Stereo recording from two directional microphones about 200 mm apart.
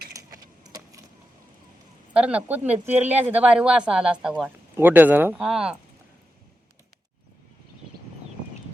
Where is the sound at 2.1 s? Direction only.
5° right (ahead or behind).